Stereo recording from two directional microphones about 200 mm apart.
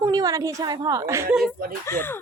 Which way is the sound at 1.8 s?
10° left (ahead or behind).